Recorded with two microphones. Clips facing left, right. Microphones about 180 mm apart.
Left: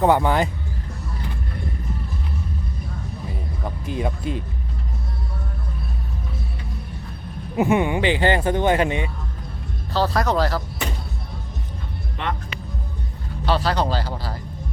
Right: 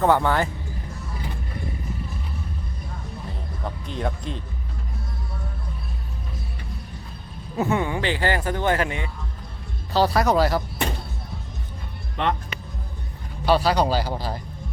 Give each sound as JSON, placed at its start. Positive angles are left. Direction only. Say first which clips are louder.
{"t": 0.0, "sound": "speech", "louder": "left 2 dB", "side_deg": 15}
{"t": 3.8, "sound": "speech", "louder": "left 4 dB", "side_deg": 5}
{"t": 7.5, "sound": "speech", "louder": "left 4 dB", "side_deg": 15}
{"t": 9.9, "sound": "speech", "louder": "right 2 dB", "side_deg": -10}
{"t": 13.4, "sound": "speech", "louder": "right 2 dB", "side_deg": -10}